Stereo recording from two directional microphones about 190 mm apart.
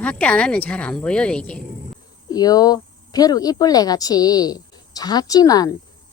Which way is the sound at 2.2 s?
20° left (ahead or behind).